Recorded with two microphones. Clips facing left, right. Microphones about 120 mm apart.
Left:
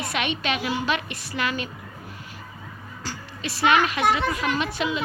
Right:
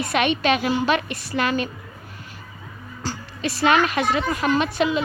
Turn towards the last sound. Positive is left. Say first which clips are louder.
# right 5 dB
turn(degrees=-45)  # may be behind; listen again after turning